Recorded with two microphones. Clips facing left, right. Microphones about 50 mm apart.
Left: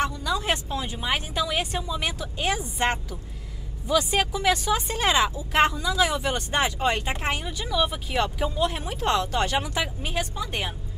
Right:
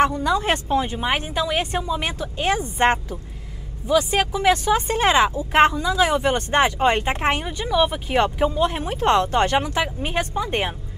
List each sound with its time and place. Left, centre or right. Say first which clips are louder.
0.0 s speech: right 7 dB; right
3.9 s speech: right 4 dB; centre
4.5 s speech: right 7 dB; right